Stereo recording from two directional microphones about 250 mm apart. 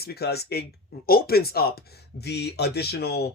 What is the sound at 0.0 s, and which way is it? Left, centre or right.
Speech, left.